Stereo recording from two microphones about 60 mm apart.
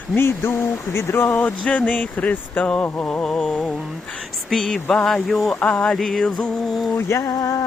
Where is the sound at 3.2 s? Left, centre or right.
Centre.